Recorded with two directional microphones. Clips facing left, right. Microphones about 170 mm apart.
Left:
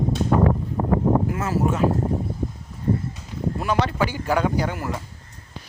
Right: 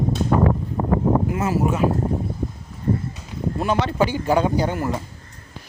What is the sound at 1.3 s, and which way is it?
Speech, 15° right (ahead or behind).